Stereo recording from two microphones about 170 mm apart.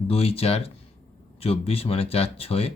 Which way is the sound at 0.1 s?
35° left (ahead or behind).